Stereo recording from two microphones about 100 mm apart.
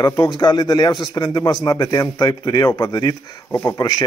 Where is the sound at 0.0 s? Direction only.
45° left (ahead or behind).